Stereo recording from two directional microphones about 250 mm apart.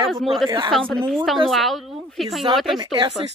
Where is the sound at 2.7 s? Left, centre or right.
Centre.